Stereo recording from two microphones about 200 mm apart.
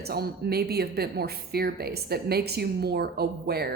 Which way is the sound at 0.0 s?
50° right (ahead or behind).